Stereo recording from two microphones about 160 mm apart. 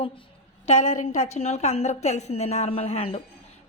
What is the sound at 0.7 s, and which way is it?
Speech, 45° left (ahead or behind).